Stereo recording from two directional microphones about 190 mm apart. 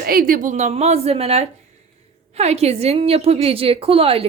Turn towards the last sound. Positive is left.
turn(degrees=-30)  # may be behind; listen again after turning